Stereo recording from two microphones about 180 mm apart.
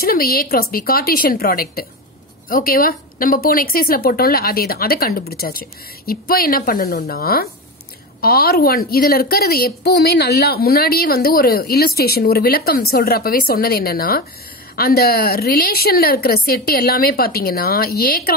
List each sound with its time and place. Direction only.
0.0 s a woman's voice: 55° left (ahead or behind)